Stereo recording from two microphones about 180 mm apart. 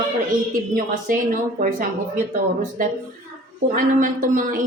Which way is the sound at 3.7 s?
50° right (ahead or behind).